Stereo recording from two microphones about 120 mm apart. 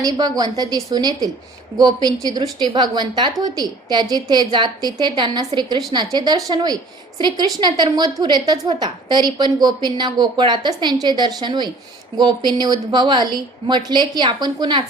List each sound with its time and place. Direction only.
0.0 s speech: 35° right (ahead or behind)